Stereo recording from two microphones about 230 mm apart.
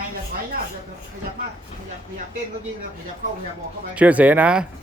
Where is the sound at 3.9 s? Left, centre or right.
Centre.